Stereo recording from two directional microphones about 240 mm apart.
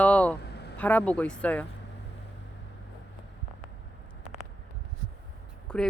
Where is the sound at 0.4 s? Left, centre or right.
Left.